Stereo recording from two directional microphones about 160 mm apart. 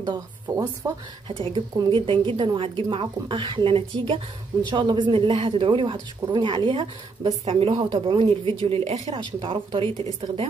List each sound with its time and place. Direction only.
0.0 s speech: 20° right (ahead or behind)
1.3 s speech: 35° right (ahead or behind)